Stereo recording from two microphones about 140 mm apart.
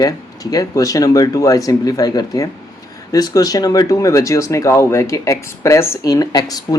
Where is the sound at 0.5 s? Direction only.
25° left (ahead or behind).